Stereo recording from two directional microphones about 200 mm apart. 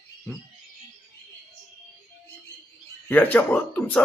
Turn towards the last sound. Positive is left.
turn(degrees=10)  # may be behind; listen again after turning